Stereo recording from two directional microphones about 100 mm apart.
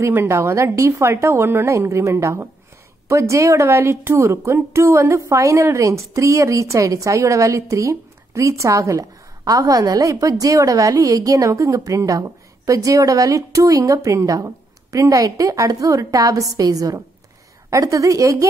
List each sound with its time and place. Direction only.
0.0 s a woman's voice: 25° right (ahead or behind)